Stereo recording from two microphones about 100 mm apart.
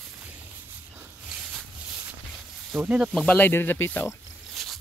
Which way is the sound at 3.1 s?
15° left (ahead or behind).